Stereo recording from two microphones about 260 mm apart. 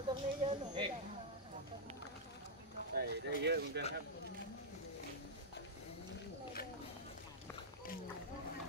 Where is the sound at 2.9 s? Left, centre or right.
Right.